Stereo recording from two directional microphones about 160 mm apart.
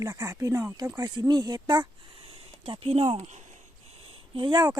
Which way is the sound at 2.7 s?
40° right (ahead or behind).